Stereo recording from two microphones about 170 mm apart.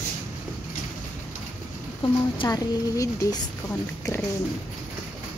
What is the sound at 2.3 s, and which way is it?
Speech, 20° left (ahead or behind).